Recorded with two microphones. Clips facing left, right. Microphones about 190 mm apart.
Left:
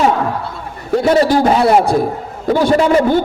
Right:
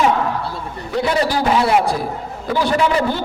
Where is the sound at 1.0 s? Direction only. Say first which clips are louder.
Left 7 dB; 45° left (ahead or behind).